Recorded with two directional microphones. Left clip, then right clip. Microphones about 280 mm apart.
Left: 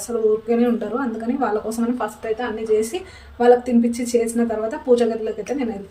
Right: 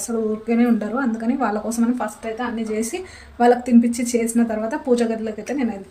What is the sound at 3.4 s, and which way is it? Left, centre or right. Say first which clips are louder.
A woman's voice: left 1 dB; centre.